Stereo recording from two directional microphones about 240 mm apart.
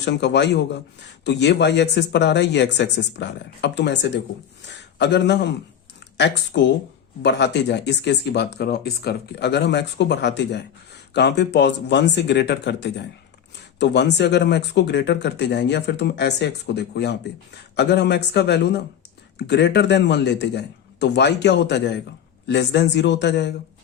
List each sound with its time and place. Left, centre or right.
0.0 s speech: left